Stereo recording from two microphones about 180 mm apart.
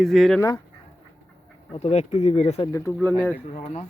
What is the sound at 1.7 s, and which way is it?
Speech, 35° left (ahead or behind).